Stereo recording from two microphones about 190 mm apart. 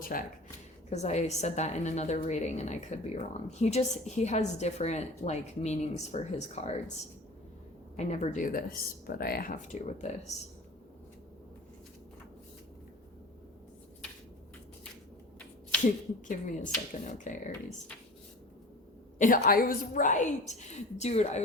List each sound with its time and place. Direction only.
0.0 s speech: 50° left (ahead or behind)
0.9 s a woman's voice: 35° left (ahead or behind)
7.9 s a woman's voice: 35° left (ahead or behind)
16.2 s a woman's voice: 40° left (ahead or behind)
19.2 s a woman's voice: 50° left (ahead or behind)